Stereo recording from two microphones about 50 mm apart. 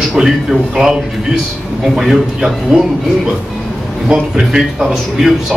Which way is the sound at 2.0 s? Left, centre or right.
Centre.